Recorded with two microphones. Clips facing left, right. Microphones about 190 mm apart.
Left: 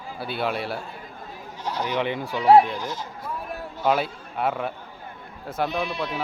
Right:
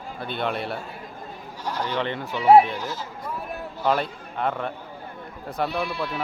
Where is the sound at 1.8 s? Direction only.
15° left (ahead or behind).